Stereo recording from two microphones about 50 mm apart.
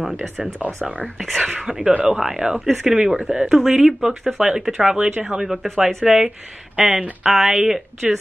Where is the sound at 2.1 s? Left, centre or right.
Centre.